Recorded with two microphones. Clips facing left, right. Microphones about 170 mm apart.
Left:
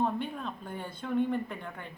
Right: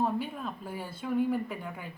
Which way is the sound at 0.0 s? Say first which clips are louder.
Even; 5° right (ahead or behind).